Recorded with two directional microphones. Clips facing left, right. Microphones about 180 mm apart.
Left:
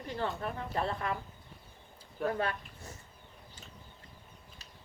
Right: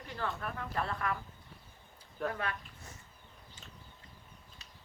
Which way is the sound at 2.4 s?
30° left (ahead or behind).